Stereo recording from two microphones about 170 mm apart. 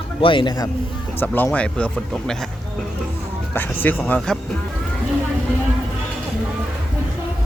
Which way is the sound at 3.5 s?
10° left (ahead or behind).